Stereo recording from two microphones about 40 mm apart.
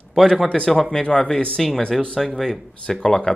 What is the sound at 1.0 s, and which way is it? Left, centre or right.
Speech, left.